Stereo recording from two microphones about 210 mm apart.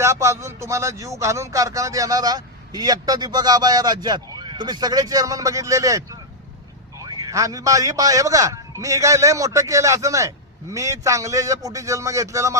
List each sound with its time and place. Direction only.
0.0 s a man's voice: 15° right (ahead or behind)